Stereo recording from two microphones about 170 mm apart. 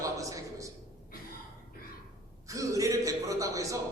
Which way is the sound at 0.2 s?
20° right (ahead or behind).